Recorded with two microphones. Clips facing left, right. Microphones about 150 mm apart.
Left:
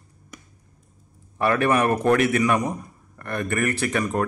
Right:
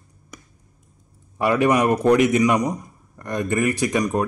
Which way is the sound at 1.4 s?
15° right (ahead or behind).